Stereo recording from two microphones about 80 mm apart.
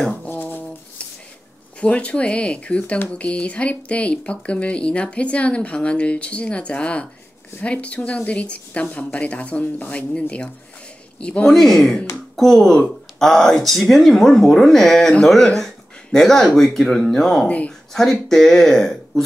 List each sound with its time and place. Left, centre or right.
0.3 s a sound: left
1.8 s speech: centre
11.5 s speech: centre
17.5 s speech: centre
17.9 s speech: centre